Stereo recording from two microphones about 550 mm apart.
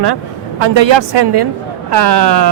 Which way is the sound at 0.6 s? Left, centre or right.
Right.